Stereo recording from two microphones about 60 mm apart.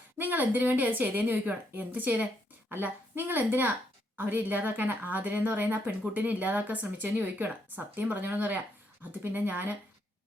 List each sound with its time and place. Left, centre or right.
0.2 s a woman's voice: right